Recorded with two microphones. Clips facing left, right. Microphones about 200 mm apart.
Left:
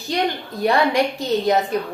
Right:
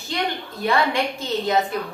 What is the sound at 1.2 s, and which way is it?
Speech, 35° left (ahead or behind).